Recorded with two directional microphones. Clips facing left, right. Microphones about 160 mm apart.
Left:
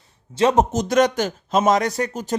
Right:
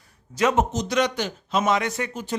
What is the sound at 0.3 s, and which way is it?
Speech, 35° left (ahead or behind).